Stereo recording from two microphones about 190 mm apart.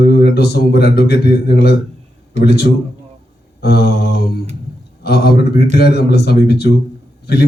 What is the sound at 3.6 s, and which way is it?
A man's voice, 55° left (ahead or behind).